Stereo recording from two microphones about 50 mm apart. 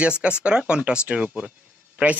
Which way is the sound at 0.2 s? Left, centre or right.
Right.